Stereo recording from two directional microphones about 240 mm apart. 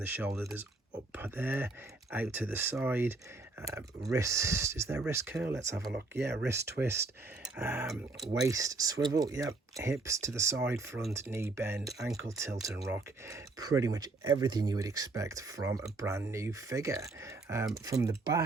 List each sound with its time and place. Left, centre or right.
0.0 s speech: centre
5.9 s speech: right
6.7 s speech: centre
11.9 s speech: centre